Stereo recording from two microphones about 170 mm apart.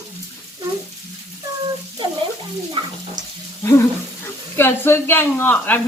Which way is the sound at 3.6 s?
15° left (ahead or behind).